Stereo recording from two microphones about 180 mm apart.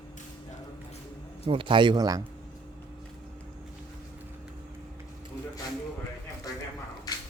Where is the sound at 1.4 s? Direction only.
30° right (ahead or behind).